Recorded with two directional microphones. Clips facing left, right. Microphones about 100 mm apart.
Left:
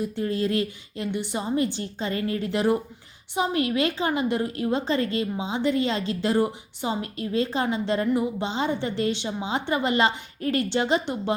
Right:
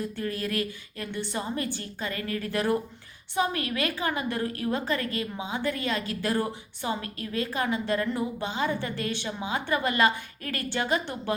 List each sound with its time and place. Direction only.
0.0 s a woman's voice: 20° left (ahead or behind)